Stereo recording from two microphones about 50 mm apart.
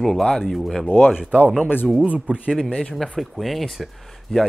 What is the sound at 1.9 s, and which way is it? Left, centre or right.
Speech, right.